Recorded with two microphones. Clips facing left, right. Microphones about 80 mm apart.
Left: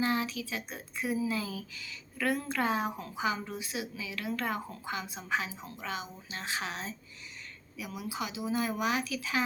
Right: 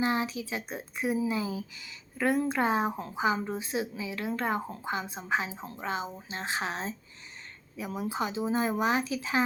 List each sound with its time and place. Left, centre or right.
0.0 s speech: right